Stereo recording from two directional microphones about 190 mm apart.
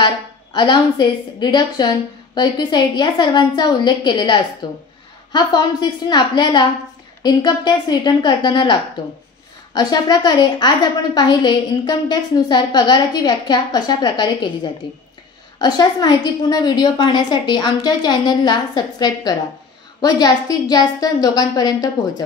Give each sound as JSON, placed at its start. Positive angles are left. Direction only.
{"t": 0.0, "sound": "a woman's voice", "side_deg": 25}
{"t": 9.8, "sound": "a woman's voice", "side_deg": 20}